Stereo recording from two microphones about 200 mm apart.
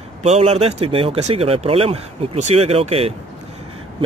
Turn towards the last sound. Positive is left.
turn(degrees=-30)  # may be behind; listen again after turning